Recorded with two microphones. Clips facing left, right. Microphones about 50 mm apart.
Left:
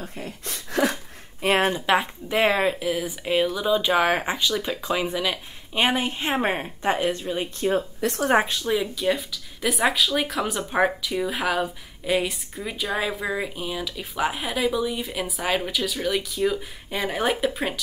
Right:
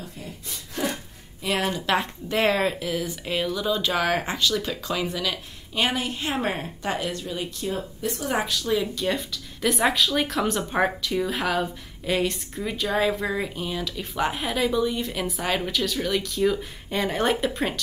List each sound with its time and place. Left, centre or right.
0.5 s a sound: left
1.4 s a sound: left
1.9 s a woman's voice: centre
8.0 s speech: left
8.7 s a woman's voice: centre
9.0 s speech: centre